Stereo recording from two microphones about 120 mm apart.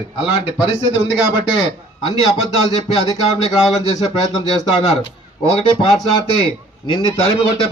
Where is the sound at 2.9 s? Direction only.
55° left (ahead or behind).